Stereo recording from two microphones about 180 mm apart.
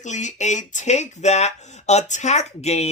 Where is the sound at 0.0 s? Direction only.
40° left (ahead or behind).